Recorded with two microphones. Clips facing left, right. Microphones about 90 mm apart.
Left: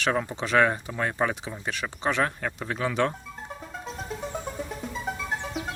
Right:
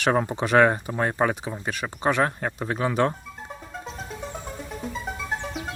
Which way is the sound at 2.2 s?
30° right (ahead or behind).